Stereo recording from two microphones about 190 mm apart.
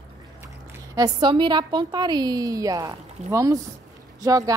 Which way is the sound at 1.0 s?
25° right (ahead or behind).